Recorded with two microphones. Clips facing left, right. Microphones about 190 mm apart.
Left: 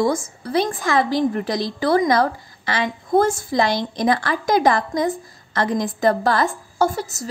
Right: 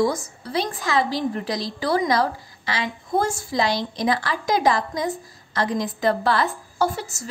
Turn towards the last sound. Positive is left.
turn(degrees=40)  # may be behind; listen again after turning